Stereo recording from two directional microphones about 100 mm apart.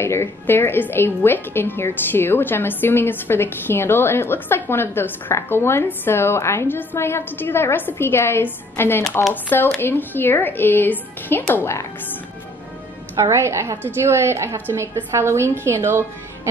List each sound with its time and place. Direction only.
0.0 s a woman's voice: 25° left (ahead or behind)
13.2 s a woman's voice: 30° right (ahead or behind)